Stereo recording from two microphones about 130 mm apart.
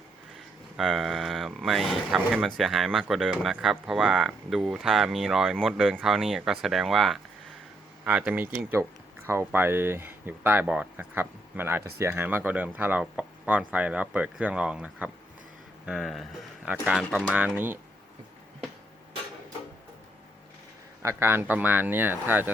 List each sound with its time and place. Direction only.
0.8 s speech: centre (ahead or behind)
21.0 s speech: 20° right (ahead or behind)